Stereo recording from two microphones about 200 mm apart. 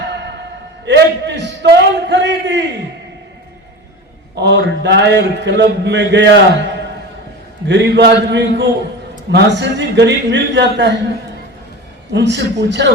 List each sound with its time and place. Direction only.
0.9 s a sound: 60° right (ahead or behind)
4.4 s a man's voice: 60° right (ahead or behind)
12.1 s a man's voice: 60° right (ahead or behind)